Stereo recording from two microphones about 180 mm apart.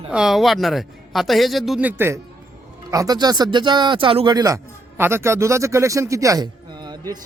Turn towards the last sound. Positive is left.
turn(degrees=-20)  # may be behind; listen again after turning